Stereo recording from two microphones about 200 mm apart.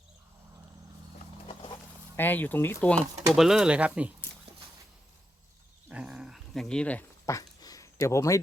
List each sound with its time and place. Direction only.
1.5 s horse: 25° left (ahead or behind)
2.1 s speech: 10° left (ahead or behind)
3.3 s speech: centre (ahead or behind)
5.9 s dog: 5° right (ahead or behind); by 8.4 s 15° left (ahead or behind)